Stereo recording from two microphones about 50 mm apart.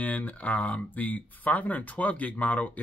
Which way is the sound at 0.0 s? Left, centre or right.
Left.